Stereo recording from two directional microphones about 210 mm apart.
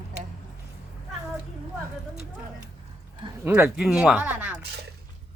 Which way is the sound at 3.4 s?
5° right (ahead or behind).